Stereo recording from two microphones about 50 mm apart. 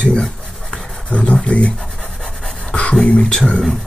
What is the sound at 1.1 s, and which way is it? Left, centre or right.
Speech, left.